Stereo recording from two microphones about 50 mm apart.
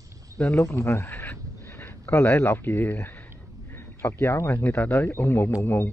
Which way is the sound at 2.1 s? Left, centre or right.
Left.